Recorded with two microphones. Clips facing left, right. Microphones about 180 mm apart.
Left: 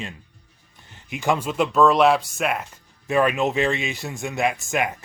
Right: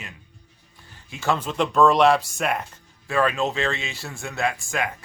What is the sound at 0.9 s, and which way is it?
Speech, 15° left (ahead or behind).